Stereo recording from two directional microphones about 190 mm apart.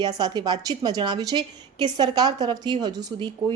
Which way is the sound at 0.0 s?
20° right (ahead or behind).